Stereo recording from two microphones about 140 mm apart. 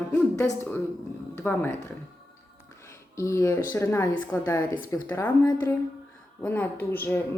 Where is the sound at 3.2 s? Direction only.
20° left (ahead or behind).